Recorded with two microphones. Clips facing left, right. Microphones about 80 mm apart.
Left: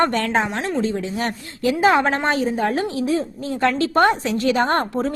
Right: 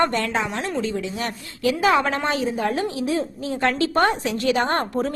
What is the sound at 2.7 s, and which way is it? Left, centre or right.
A woman's voice, left.